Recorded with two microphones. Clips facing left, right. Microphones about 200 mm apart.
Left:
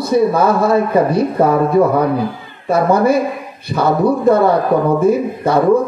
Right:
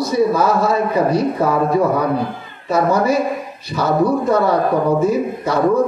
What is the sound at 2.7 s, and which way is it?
A man's voice, 55° left (ahead or behind).